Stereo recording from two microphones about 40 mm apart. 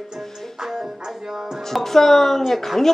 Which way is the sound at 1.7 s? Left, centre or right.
Centre.